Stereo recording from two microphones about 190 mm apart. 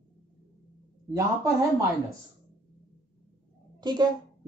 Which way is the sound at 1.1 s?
15° right (ahead or behind).